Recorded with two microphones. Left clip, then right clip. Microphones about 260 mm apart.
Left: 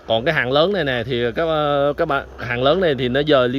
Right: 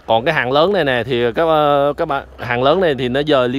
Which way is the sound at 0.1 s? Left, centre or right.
Centre.